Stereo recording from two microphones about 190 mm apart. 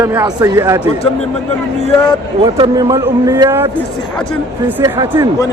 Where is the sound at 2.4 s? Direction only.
25° right (ahead or behind).